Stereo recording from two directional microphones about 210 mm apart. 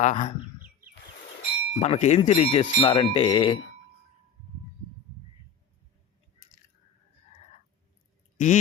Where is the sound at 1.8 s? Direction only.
30° left (ahead or behind).